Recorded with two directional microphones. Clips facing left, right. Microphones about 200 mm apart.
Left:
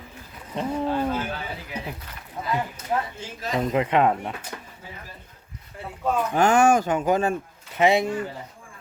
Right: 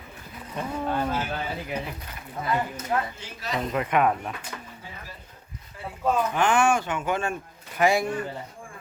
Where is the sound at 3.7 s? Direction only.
25° left (ahead or behind).